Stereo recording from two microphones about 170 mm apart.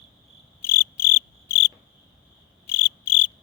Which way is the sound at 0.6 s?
15° left (ahead or behind).